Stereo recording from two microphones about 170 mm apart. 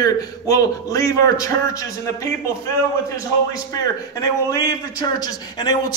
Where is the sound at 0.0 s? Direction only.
20° left (ahead or behind).